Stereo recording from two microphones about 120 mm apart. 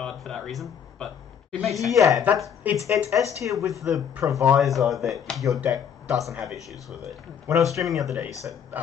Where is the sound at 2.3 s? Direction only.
15° right (ahead or behind).